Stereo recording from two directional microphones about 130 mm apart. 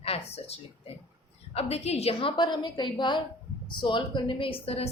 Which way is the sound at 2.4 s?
35° left (ahead or behind).